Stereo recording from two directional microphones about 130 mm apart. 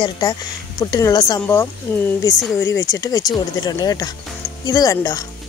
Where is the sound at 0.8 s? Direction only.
25° left (ahead or behind).